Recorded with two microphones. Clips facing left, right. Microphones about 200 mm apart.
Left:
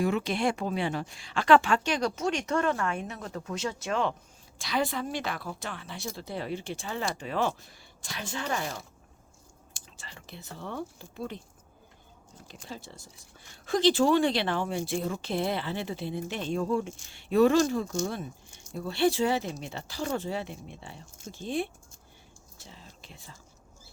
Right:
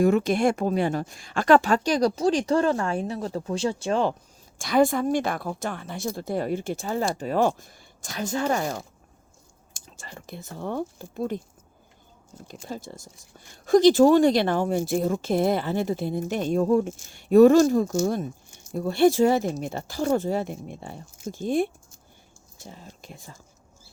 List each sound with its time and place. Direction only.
0.0 s a woman's voice: 45° right (ahead or behind)
4.5 s a woman's voice: 50° right (ahead or behind)
12.5 s a woman's voice: 45° right (ahead or behind)